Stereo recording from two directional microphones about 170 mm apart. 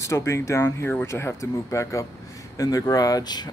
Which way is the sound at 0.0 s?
15° left (ahead or behind).